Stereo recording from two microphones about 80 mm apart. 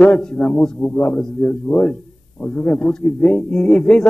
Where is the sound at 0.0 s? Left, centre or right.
Centre.